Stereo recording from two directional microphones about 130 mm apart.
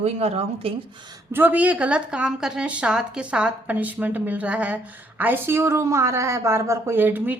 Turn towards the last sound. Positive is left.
turn(degrees=-15)  # may be behind; listen again after turning